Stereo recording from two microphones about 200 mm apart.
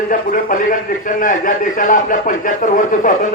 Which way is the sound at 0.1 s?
45° left (ahead or behind).